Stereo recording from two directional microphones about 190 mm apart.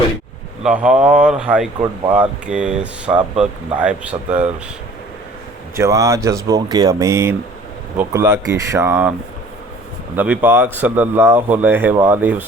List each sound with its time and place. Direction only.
0.6 s speech: 5° right (ahead or behind)
5.7 s speech: 15° right (ahead or behind)
10.2 s speech: 10° right (ahead or behind)